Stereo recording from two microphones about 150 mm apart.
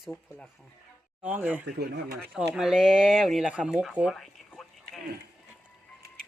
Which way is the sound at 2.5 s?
5° right (ahead or behind).